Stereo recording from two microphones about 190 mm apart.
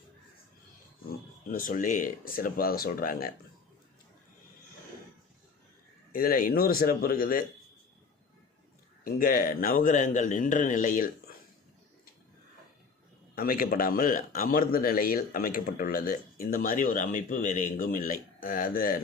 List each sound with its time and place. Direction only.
1.5 s a man's voice: 45° left (ahead or behind)
6.1 s a man's voice: 50° left (ahead or behind)
9.0 s a man's voice: 50° left (ahead or behind)
13.3 s a man's voice: 50° left (ahead or behind)